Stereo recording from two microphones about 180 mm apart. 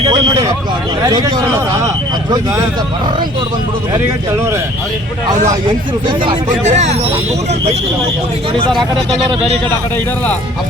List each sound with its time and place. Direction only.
0.1 s speech: 20° right (ahead or behind)
6.7 s speech: 40° right (ahead or behind)